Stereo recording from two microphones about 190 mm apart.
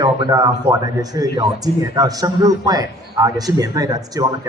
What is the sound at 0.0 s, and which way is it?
Speech, 20° right (ahead or behind).